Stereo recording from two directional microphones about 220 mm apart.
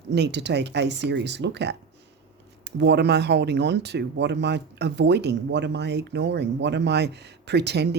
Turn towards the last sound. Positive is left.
turn(degrees=-50)  # may be behind; listen again after turning